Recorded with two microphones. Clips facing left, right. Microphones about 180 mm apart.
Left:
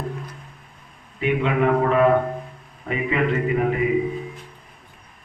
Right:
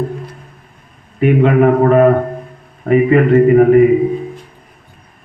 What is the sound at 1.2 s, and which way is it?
A man's voice, 50° right (ahead or behind).